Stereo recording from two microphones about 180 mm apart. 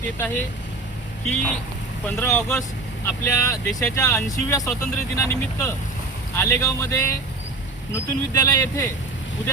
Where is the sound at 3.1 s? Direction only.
15° left (ahead or behind).